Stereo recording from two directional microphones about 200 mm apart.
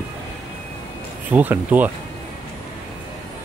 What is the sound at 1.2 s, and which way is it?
Speech, 10° right (ahead or behind).